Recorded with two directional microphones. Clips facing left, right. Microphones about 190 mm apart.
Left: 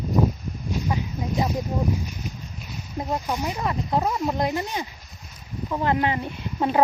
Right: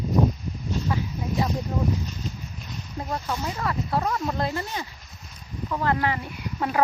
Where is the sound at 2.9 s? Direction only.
15° left (ahead or behind).